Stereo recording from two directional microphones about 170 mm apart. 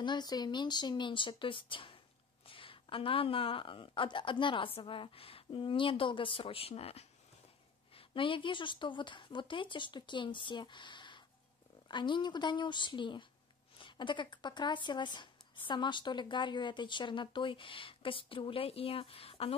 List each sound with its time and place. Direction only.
0.0 s a woman's voice: 25° left (ahead or behind)